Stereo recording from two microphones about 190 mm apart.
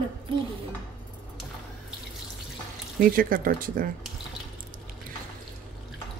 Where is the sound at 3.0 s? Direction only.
45° right (ahead or behind).